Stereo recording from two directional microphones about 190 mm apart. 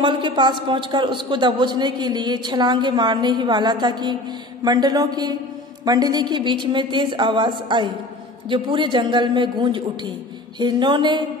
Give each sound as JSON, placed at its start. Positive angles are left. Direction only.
{"t": 0.0, "sound": "a man's voice", "side_deg": -25}